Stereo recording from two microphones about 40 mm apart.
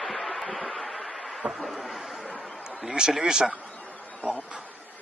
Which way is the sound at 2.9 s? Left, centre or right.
Centre.